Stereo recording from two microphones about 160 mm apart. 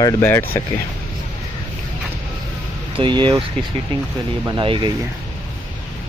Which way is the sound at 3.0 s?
30° right (ahead or behind).